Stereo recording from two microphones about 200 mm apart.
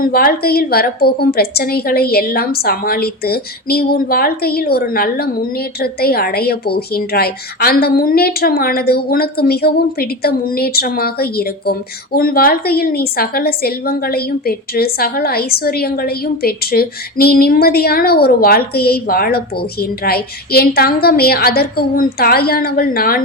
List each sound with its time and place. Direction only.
0.0 s a woman's voice: 45° left (ahead or behind)